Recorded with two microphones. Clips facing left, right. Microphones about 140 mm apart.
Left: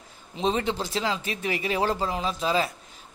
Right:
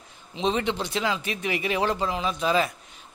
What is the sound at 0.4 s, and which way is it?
A man's voice, 40° left (ahead or behind).